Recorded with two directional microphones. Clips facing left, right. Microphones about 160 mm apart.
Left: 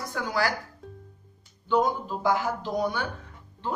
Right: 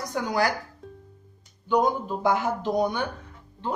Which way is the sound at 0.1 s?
20° right (ahead or behind).